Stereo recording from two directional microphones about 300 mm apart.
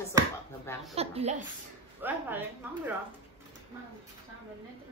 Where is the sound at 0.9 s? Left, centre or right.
Right.